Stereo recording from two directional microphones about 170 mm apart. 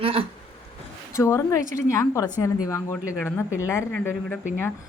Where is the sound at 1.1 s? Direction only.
15° left (ahead or behind).